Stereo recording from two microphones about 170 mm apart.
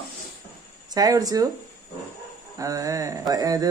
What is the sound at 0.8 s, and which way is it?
Speech, 20° right (ahead or behind).